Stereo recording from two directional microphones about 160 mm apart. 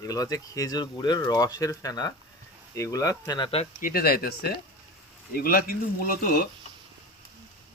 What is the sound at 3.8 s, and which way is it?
Speech, 65° left (ahead or behind).